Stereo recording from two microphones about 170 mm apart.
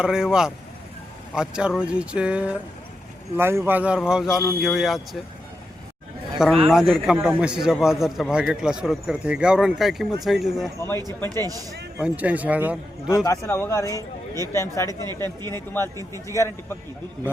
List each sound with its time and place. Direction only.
0.0 s a man's voice: 5° right (ahead or behind)
6.7 s a man's voice: centre (ahead or behind)
10.8 s a man's voice: 15° left (ahead or behind)
11.3 s speech: 20° right (ahead or behind)
11.9 s speech: 10° right (ahead or behind)
13.1 s a man's voice: 15° left (ahead or behind)
14.8 s speech: 25° right (ahead or behind)
15.5 s a man's voice: 15° left (ahead or behind)